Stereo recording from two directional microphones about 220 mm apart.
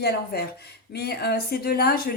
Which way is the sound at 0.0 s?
45° left (ahead or behind).